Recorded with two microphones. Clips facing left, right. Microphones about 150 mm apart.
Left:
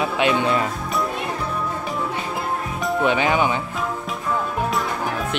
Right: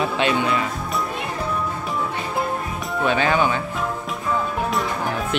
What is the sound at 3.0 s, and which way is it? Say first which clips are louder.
Speech: even; 15° left (ahead or behind).